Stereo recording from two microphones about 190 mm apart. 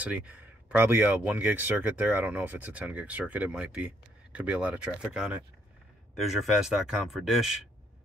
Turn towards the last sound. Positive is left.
turn(degrees=0)  # may be behind; listen again after turning